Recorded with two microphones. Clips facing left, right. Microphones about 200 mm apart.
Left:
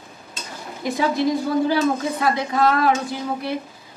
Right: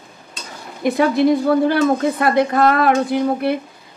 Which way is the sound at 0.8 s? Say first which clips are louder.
Right 6 dB; 60° right (ahead or behind).